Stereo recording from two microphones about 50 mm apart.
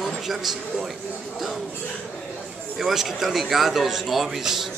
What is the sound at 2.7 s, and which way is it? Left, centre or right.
Speech, centre.